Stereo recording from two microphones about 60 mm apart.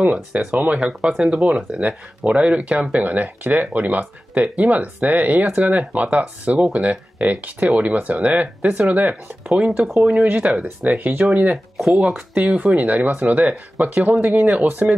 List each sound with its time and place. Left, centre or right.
0.0 s speech: centre
1.8 s speech: right
11.5 s speech: centre
12.4 s speech: centre